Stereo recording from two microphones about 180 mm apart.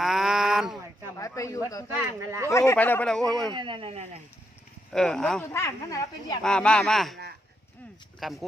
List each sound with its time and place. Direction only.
0.0 s a sound: centre (ahead or behind)
1.2 s a man's voice: 15° left (ahead or behind)
1.9 s speech: 15° right (ahead or behind)
2.5 s speech: 15° left (ahead or behind)
3.5 s speech: 25° right (ahead or behind)
4.9 s speech: 5° left (ahead or behind); by 6.4 s 20° left (ahead or behind)
6.4 s speech: 5° left (ahead or behind)
8.2 s speech: centre (ahead or behind)